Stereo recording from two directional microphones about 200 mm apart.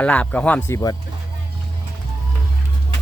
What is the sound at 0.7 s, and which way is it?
Speech, 20° left (ahead or behind).